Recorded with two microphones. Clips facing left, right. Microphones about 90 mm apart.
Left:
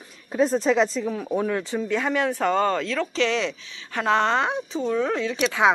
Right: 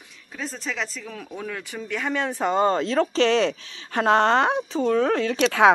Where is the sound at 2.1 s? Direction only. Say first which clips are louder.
Even; 5° left (ahead or behind).